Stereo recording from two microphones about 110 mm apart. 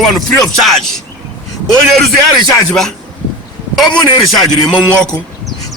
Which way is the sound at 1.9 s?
Centre (ahead or behind).